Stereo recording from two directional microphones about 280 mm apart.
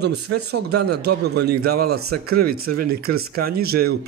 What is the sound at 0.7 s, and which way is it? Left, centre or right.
A man's voice, right.